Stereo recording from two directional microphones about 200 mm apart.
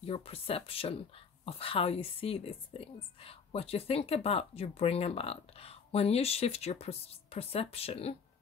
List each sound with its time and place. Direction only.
0.0 s speech: 30° left (ahead or behind)